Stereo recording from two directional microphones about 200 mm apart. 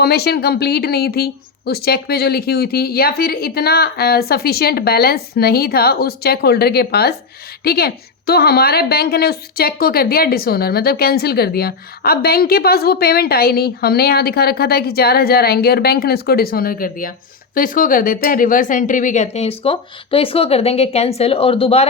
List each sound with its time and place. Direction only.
0.0 s a woman's voice: 55° left (ahead or behind); by 21.8 s 30° left (ahead or behind)